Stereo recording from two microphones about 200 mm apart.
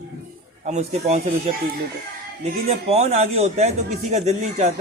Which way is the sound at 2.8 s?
30° right (ahead or behind).